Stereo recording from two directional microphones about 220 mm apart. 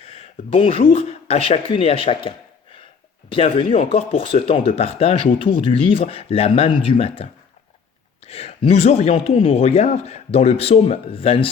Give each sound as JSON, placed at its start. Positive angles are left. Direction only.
{"t": 0.0, "sound": "speech", "side_deg": 25}